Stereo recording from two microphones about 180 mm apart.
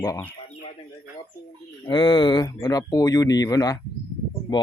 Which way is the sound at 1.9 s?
25° left (ahead or behind).